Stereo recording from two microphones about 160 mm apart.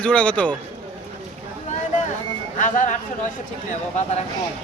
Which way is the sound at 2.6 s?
50° left (ahead or behind).